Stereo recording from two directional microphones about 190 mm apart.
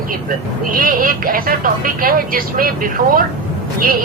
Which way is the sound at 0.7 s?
45° right (ahead or behind).